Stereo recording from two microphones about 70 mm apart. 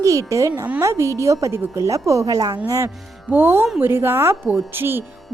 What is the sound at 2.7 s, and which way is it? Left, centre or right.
Speech, right.